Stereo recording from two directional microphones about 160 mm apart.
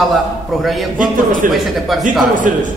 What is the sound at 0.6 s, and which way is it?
A man's voice, centre (ahead or behind).